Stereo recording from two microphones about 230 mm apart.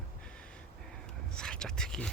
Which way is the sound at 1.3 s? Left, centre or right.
Centre.